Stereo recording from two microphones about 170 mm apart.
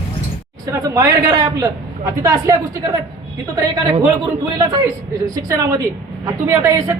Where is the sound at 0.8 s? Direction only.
20° right (ahead or behind).